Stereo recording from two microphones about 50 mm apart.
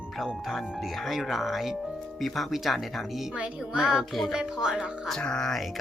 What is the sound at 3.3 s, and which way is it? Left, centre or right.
Speech, centre.